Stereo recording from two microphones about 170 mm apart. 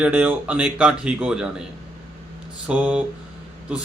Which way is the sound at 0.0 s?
10° right (ahead or behind).